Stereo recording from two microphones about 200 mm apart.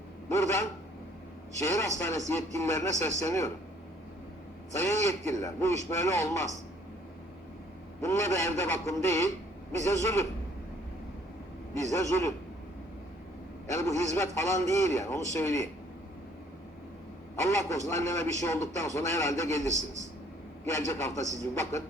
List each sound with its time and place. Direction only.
0.3 s a man's voice: 15° left (ahead or behind)
4.8 s a man's voice: 15° left (ahead or behind)
8.0 s a man's voice: 15° left (ahead or behind)
11.9 s a man's voice: 15° left (ahead or behind)
13.7 s a man's voice: 15° left (ahead or behind)
17.6 s a man's voice: 15° left (ahead or behind)
20.7 s a man's voice: 15° left (ahead or behind)